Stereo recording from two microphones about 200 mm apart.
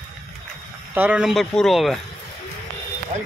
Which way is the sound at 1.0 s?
5° right (ahead or behind).